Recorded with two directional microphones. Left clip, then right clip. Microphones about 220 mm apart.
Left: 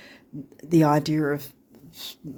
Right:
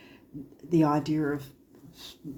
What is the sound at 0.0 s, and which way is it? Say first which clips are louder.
Speech: left 4 dB; 50° left (ahead or behind).